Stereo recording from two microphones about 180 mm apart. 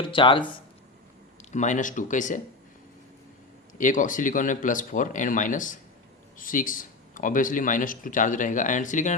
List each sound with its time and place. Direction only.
0.0 s speech: 30° left (ahead or behind)
1.5 s speech: 45° left (ahead or behind)
3.8 s speech: 45° left (ahead or behind)